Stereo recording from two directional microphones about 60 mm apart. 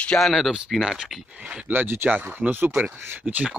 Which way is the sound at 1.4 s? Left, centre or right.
Centre.